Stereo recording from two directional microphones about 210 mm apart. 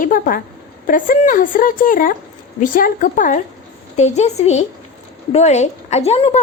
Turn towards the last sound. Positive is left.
turn(degrees=30)  # may be behind; listen again after turning